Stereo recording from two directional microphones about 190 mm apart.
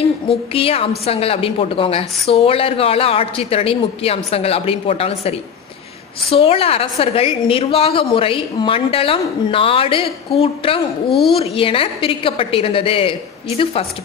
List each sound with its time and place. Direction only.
0.5 s a woman's voice: 30° left (ahead or behind)
6.3 s a woman's voice: 30° left (ahead or behind)